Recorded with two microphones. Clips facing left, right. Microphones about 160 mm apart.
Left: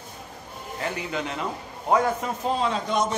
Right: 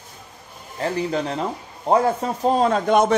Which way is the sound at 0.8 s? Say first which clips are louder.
Right 7 dB; 35° right (ahead or behind).